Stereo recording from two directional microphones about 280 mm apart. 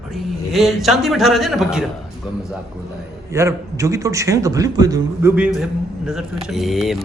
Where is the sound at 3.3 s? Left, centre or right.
Centre.